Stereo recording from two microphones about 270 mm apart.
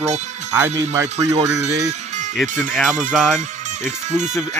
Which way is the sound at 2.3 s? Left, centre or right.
Centre.